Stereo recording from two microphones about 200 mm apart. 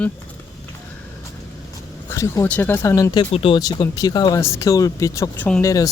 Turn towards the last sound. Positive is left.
turn(degrees=15)  # may be behind; listen again after turning